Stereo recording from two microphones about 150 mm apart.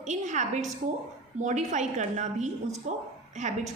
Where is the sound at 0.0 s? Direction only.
50° right (ahead or behind).